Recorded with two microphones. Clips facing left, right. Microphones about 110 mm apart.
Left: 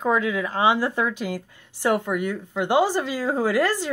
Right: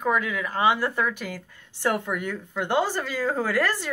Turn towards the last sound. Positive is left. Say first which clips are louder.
# left 3 dB
turn(degrees=15)  # may be behind; listen again after turning